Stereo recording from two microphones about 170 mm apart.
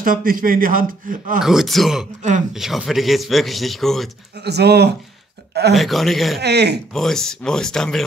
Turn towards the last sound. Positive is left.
turn(degrees=5)  # may be behind; listen again after turning